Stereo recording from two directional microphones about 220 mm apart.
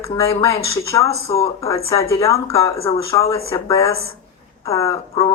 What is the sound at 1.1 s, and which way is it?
Speech, 25° left (ahead or behind).